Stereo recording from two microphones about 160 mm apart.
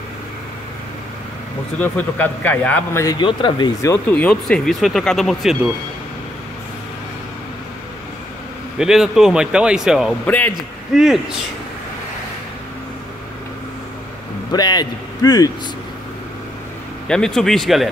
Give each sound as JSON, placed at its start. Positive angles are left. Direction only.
{"t": 1.8, "sound": "a man's voice", "side_deg": 10}
{"t": 4.1, "sound": "speech", "side_deg": 5}
{"t": 8.7, "sound": "speech", "side_deg": -5}
{"t": 10.2, "sound": "a man's voice", "side_deg": 10}
{"t": 11.0, "sound": "speech", "side_deg": -5}
{"t": 14.5, "sound": "speech", "side_deg": 25}
{"t": 17.1, "sound": "speech", "side_deg": 5}